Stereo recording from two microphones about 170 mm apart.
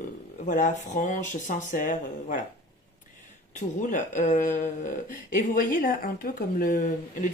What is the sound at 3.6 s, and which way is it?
Speech, 50° left (ahead or behind).